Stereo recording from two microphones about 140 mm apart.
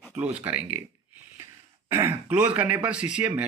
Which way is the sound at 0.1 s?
15° right (ahead or behind).